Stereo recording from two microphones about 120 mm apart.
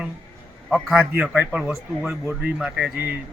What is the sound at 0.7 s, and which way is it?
Speech, centre (ahead or behind).